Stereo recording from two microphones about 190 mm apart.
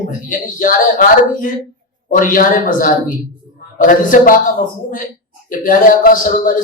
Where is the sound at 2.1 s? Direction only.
45° left (ahead or behind).